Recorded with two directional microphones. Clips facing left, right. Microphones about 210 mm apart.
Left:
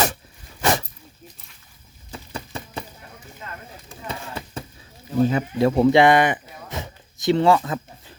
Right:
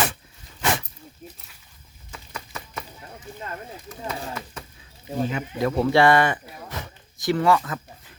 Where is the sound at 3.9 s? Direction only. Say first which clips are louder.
Right 1 dB; 30° left (ahead or behind).